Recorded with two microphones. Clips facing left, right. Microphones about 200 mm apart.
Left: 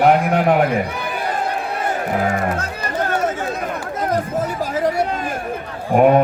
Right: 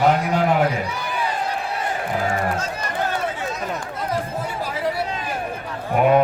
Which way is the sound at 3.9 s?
45° left (ahead or behind).